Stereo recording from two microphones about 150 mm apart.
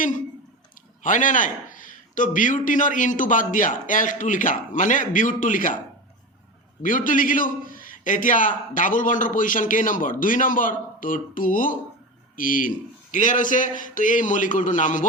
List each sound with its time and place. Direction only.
1.0 s a man's voice: 60° left (ahead or behind)
6.8 s a man's voice: 65° left (ahead or behind)